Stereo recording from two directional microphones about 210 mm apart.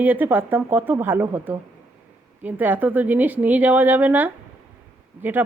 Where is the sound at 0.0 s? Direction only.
10° right (ahead or behind).